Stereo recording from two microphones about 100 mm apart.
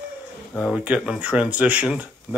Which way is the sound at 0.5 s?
5° right (ahead or behind).